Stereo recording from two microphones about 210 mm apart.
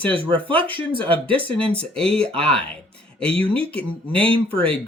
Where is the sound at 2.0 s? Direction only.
5° left (ahead or behind).